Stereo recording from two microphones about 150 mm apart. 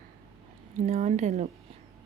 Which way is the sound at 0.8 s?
50° right (ahead or behind).